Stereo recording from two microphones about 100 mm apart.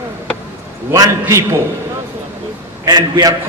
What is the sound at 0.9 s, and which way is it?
Speech, 30° right (ahead or behind).